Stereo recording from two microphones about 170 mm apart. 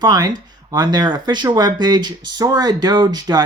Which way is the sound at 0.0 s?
20° right (ahead or behind).